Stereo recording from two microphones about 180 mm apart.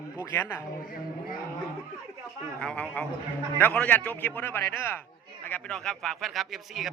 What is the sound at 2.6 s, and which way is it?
A man's voice, 5° left (ahead or behind).